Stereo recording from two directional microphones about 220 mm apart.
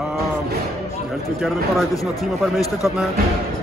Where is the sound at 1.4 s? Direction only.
Centre (ahead or behind).